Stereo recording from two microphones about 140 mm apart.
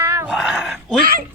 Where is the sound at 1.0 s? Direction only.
90° right.